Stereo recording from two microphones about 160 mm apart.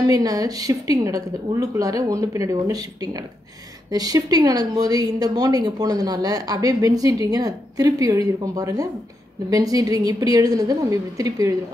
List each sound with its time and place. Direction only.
0.0 s a woman's voice: 20° right (ahead or behind)